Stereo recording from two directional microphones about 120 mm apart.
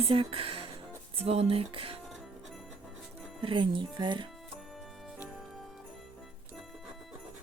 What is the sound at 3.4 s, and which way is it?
Speech, 45° right (ahead or behind).